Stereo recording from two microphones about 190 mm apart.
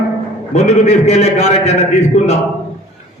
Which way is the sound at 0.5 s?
35° left (ahead or behind).